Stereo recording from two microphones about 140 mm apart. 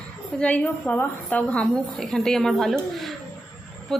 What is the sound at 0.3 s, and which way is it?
A woman's voice, 10° left (ahead or behind).